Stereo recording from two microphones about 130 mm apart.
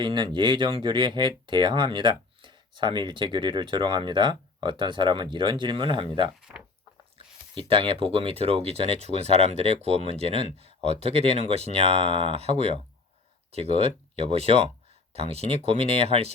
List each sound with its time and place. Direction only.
0.0 s speech: 35° right (ahead or behind)
7.5 s speech: 45° right (ahead or behind)